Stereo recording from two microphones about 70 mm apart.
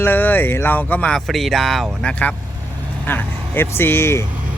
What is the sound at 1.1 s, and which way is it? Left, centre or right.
Speech, centre.